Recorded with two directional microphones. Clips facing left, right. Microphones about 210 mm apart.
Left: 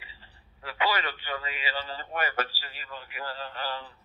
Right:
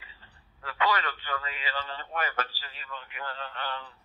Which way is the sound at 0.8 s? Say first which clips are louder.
Right 1 dB; 30° left (ahead or behind).